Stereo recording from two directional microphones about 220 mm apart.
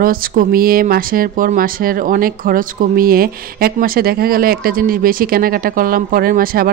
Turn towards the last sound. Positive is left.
turn(degrees=-40)  # may be behind; listen again after turning